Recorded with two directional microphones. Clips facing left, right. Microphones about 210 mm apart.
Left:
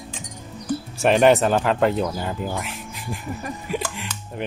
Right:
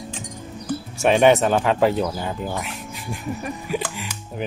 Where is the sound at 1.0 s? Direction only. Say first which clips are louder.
Even; centre (ahead or behind).